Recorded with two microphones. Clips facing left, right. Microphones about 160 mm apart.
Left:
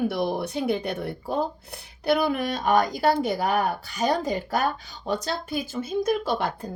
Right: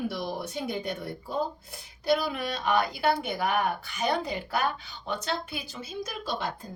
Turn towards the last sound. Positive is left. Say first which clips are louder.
# left 7 dB
turn(degrees=60)  # may be behind; listen again after turning